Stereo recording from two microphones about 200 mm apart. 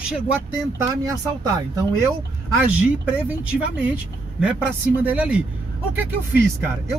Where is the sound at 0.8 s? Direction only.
15° right (ahead or behind).